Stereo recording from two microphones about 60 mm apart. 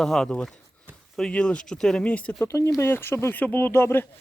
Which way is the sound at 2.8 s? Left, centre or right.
Left.